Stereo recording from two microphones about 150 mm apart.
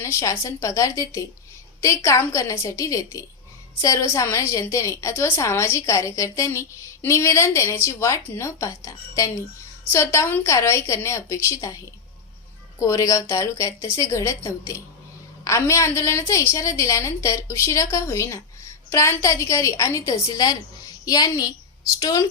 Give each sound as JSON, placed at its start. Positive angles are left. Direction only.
{"t": 0.0, "sound": "a woman's voice", "side_deg": 20}
{"t": 12.8, "sound": "a woman's voice", "side_deg": 20}